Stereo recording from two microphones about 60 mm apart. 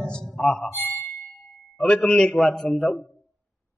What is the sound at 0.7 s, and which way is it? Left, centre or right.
Ding, left.